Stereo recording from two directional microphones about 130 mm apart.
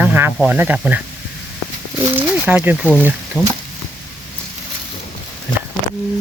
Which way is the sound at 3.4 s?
25° left (ahead or behind).